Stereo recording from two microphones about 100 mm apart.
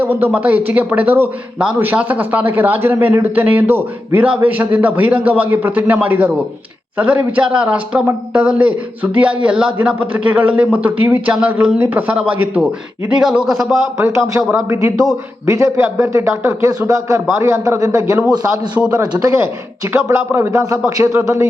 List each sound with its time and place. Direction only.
0.0 s a man's voice: 20° right (ahead or behind); by 13.7 s 5° right (ahead or behind)
14.0 s a man's voice: 30° right (ahead or behind)